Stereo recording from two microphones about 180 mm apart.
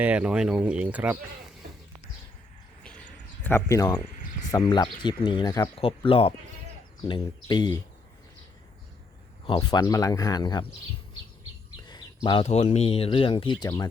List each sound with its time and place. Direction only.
0.0 s speech: 5° right (ahead or behind)
3.4 s speech: 15° left (ahead or behind)
4.1 s cricket: 50° left (ahead or behind)
4.5 s speech: 25° left (ahead or behind)
9.4 s speech: 25° left (ahead or behind)
11.9 s bird: 25° left (ahead or behind)
12.5 s speech: 35° left (ahead or behind)